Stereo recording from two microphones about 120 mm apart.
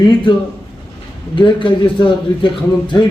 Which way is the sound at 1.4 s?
45° left (ahead or behind).